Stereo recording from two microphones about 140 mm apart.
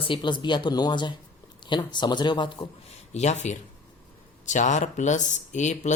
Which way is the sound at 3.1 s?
55° left (ahead or behind).